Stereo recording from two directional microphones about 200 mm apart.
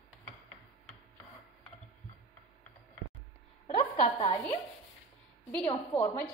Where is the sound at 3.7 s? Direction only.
30° left (ahead or behind).